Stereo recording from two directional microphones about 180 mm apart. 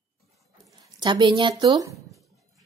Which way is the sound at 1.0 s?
25° right (ahead or behind).